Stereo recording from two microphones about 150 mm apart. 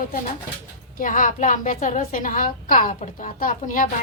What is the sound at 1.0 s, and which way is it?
A woman's voice, 60° left (ahead or behind).